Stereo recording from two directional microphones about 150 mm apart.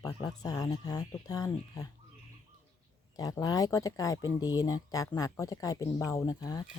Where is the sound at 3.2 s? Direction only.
25° left (ahead or behind).